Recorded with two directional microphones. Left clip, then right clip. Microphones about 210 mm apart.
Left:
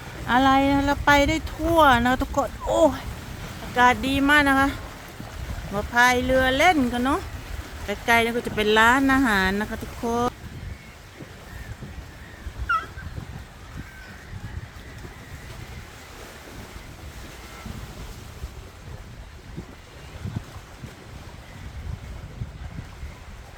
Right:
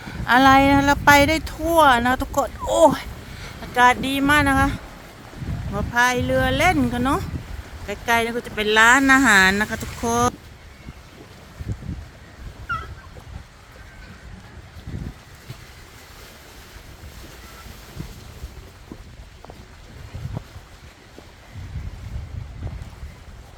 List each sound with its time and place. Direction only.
0.3 s speech: 25° right (ahead or behind)
2.4 s speech: 30° right (ahead or behind)
3.8 s speech: 15° right (ahead or behind)
12.7 s dog: 55° left (ahead or behind)